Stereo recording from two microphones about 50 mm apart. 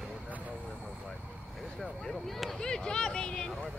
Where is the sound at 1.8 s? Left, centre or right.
Centre.